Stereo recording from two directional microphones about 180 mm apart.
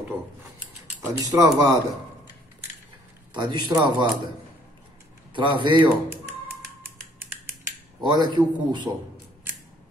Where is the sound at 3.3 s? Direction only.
25° right (ahead or behind).